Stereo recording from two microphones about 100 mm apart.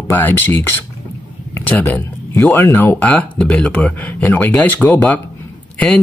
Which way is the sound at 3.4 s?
10° left (ahead or behind).